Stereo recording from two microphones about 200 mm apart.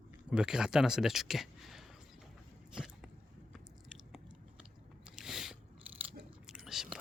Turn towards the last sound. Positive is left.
turn(degrees=-5)  # may be behind; listen again after turning